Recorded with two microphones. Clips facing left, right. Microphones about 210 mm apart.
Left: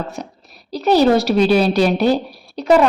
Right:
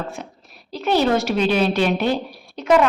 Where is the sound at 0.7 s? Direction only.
40° left (ahead or behind).